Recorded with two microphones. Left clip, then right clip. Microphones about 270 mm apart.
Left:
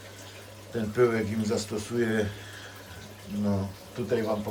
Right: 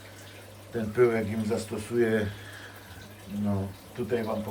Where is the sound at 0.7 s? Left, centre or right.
Centre.